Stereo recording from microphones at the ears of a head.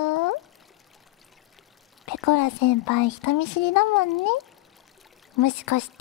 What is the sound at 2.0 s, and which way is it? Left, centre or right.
Speech, left.